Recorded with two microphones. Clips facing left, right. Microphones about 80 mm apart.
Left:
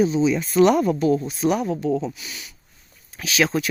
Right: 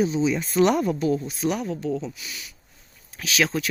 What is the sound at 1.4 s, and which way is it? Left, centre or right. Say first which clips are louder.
Speech: left 4 dB; left.